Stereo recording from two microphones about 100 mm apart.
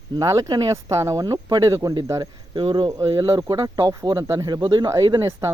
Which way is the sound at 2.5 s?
55° right (ahead or behind).